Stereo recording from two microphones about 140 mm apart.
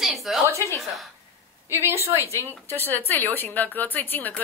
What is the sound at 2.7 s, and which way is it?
Speech, 15° left (ahead or behind).